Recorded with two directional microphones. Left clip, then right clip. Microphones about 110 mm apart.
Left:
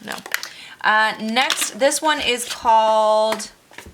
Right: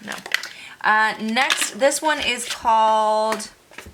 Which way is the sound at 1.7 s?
20° left (ahead or behind).